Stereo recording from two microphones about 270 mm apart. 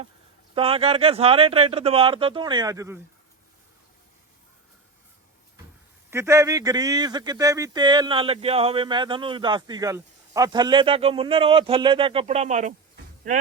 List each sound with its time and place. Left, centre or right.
0.5 s speech: right
6.1 s speech: centre; by 12.7 s right